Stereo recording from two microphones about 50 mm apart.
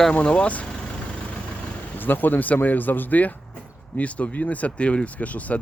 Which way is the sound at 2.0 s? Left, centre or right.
Left.